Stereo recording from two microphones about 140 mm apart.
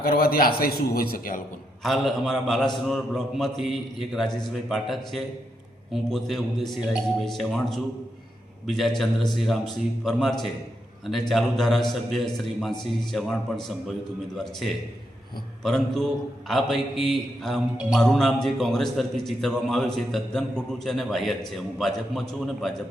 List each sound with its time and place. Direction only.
0.0 s a man's voice: 90° left
1.8 s a man's voice: centre (ahead or behind)
15.6 s a man's voice: 5° left (ahead or behind)